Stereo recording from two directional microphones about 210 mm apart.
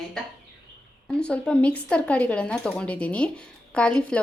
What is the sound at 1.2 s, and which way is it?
Speech, 5° left (ahead or behind).